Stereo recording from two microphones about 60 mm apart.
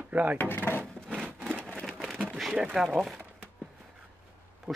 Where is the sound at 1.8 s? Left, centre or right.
Centre.